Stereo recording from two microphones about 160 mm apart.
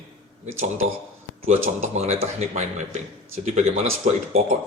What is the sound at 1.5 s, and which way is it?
A man's voice, 40° right (ahead or behind).